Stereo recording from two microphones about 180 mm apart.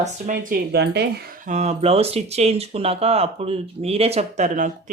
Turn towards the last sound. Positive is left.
turn(degrees=-45)  # may be behind; listen again after turning